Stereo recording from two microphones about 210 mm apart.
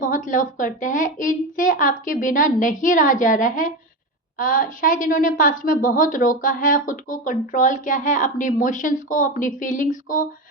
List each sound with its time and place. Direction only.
0.0 s a woman's voice: 40° left (ahead or behind)